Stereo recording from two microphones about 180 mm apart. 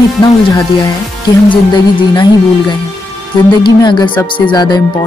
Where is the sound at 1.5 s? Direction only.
25° left (ahead or behind).